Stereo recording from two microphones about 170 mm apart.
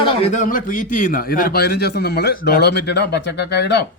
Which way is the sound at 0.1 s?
35° left (ahead or behind).